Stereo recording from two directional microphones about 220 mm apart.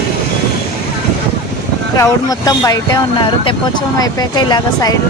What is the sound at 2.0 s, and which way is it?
Speech, 15° left (ahead or behind).